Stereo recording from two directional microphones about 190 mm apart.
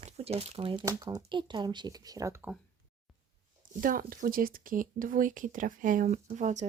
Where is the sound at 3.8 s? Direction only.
45° right (ahead or behind).